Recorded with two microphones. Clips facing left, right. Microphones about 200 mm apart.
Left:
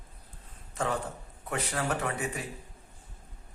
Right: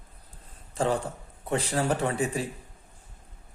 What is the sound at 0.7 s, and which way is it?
A man's voice, 30° right (ahead or behind).